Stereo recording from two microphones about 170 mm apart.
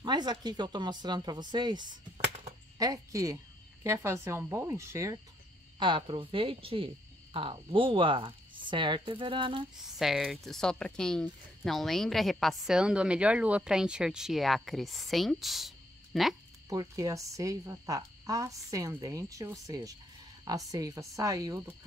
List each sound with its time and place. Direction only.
0.0 s speech: 25° right (ahead or behind)
2.2 s a sound: 40° right (ahead or behind)
2.8 s speech: 20° right (ahead or behind)
5.8 s speech: 30° right (ahead or behind)
9.8 s a woman's voice: centre (ahead or behind)
16.6 s speech: 20° right (ahead or behind)